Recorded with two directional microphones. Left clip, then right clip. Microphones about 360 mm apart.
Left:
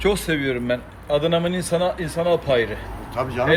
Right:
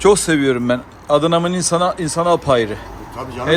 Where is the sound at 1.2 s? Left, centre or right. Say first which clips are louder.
Right 5 dB; right.